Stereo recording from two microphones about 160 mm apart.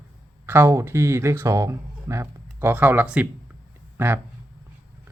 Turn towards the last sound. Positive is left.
turn(degrees=-15)  # may be behind; listen again after turning